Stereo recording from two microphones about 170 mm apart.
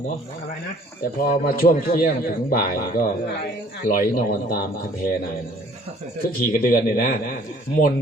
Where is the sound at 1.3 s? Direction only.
60° left (ahead or behind).